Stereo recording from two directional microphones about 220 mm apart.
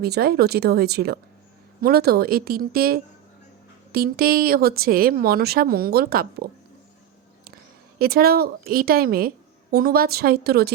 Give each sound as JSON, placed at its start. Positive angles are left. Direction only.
{"t": 0.0, "sound": "speech", "side_deg": -45}
{"t": 7.9, "sound": "speech", "side_deg": -45}